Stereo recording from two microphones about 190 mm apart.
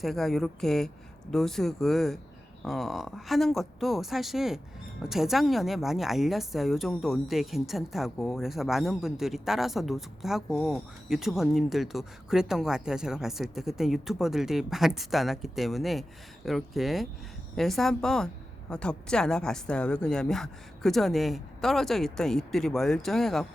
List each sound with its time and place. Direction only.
0.0 s a woman's voice: centre (ahead or behind)